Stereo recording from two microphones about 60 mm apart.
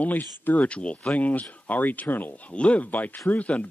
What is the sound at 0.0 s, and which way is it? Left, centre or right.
A man's voice, left.